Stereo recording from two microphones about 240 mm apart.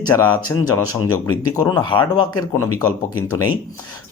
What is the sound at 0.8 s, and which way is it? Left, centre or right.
Speech, left.